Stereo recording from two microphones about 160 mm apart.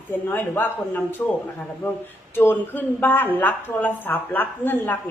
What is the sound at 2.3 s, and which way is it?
A woman's voice, 10° left (ahead or behind).